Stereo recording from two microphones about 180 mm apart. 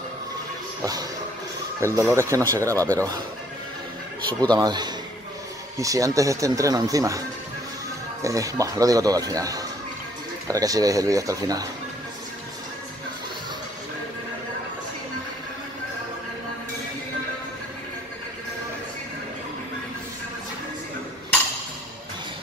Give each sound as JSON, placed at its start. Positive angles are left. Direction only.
{"t": 1.8, "sound": "speech", "side_deg": -15}
{"t": 4.4, "sound": "speech", "side_deg": -25}